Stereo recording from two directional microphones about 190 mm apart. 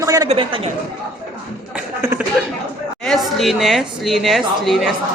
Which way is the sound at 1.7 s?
10° right (ahead or behind).